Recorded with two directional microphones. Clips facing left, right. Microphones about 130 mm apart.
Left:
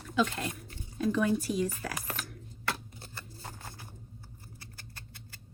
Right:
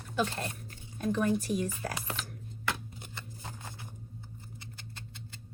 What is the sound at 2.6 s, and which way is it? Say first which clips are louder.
Shuffling cards: even; 15° right (ahead or behind).